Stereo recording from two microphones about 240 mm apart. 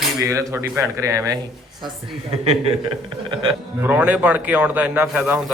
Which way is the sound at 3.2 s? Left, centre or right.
Centre.